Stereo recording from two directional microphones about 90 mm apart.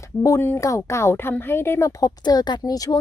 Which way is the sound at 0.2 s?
30° left (ahead or behind).